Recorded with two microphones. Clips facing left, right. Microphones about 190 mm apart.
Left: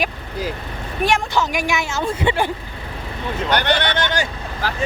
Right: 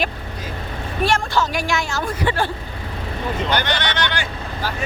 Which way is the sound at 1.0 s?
20° left (ahead or behind).